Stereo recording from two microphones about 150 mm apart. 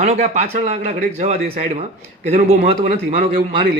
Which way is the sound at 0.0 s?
45° right (ahead or behind).